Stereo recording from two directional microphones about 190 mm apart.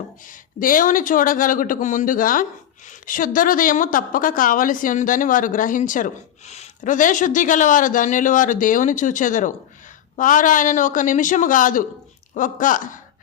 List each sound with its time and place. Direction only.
0.6 s speech: 45° left (ahead or behind)